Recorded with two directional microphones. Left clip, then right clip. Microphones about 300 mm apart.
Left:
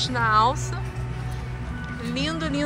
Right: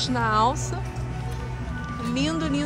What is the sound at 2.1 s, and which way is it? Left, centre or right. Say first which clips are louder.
Speech: right 1 dB; centre.